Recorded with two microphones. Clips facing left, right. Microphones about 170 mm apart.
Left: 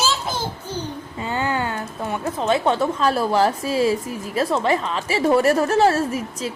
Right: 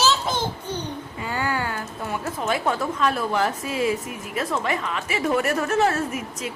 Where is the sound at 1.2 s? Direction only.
25° left (ahead or behind).